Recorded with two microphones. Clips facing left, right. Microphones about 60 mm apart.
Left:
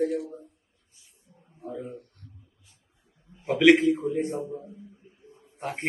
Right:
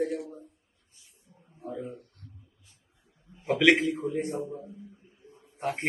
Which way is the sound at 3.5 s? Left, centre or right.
Centre.